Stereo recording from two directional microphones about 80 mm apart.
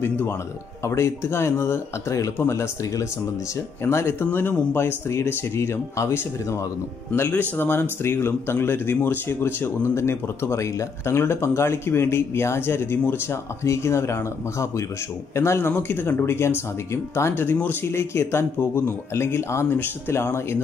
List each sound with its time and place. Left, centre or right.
0.0 s speech: left
3.8 s speech: left
7.2 s speech: left